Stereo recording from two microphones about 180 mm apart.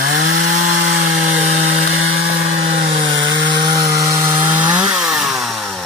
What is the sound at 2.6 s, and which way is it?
Chainsaw, 50° right (ahead or behind).